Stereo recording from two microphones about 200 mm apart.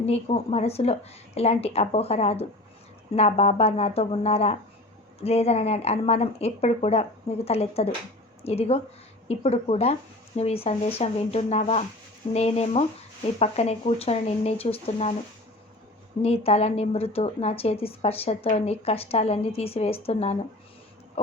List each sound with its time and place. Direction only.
0.0 s speech: 30° left (ahead or behind)
16.2 s speech: 30° left (ahead or behind)